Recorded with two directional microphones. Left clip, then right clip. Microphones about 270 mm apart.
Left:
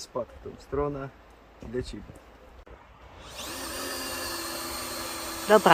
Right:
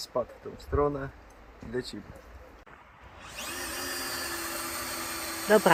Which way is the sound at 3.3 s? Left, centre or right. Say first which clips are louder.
Even; left.